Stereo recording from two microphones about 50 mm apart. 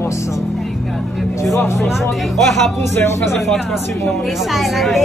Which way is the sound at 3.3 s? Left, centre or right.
Centre.